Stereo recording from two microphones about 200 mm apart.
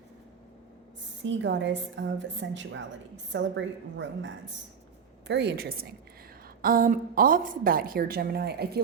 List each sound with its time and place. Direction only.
1.2 s a woman's voice: 65° right (ahead or behind)
5.3 s a woman's voice: 55° right (ahead or behind)